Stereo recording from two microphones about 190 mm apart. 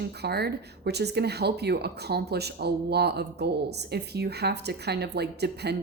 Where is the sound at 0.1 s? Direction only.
60° right (ahead or behind).